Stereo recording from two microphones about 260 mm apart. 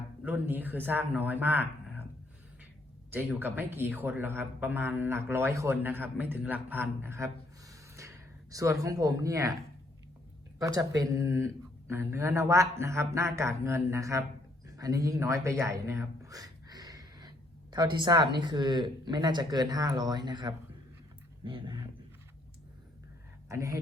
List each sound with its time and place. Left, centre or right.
0.3 s a man's voice: centre
3.1 s a man's voice: centre
7.7 s a sound: centre
10.6 s a man's voice: centre
23.5 s a man's voice: centre